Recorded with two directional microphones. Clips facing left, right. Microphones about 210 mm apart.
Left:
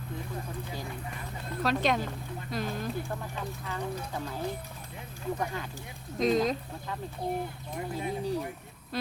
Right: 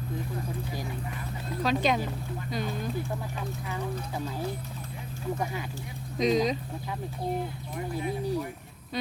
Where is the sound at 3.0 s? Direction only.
15° right (ahead or behind).